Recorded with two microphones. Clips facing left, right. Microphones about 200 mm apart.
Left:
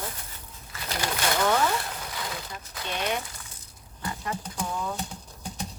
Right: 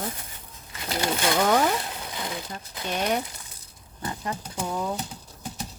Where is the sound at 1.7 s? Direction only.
20° right (ahead or behind).